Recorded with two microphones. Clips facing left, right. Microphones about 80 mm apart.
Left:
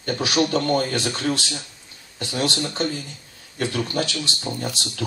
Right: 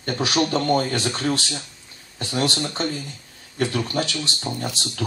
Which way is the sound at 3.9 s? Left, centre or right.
Right.